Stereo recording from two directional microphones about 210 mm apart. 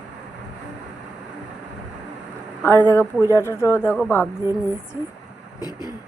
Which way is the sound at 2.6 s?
10° left (ahead or behind).